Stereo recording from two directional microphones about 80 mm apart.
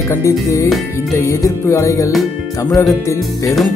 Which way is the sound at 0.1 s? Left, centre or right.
Left.